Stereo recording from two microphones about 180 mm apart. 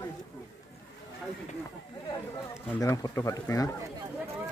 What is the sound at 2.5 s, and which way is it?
A man's voice, 15° left (ahead or behind).